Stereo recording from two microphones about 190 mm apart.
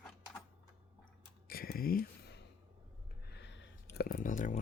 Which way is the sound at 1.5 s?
50° left (ahead or behind).